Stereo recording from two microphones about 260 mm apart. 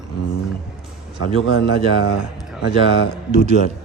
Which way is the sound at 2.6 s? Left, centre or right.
Left.